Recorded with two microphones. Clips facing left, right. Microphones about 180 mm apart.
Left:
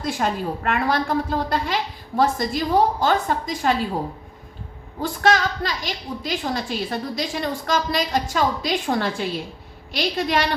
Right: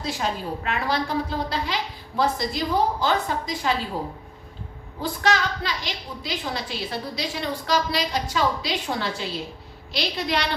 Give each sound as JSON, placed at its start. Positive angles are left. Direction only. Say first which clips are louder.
{"t": 0.0, "sound": "a woman's voice", "louder": "left 4 dB", "side_deg": 50}
{"t": 5.0, "sound": "a woman's voice", "louder": "left 4 dB", "side_deg": 45}